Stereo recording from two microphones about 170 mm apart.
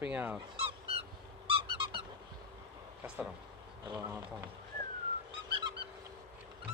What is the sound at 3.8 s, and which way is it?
Speech, 20° right (ahead or behind).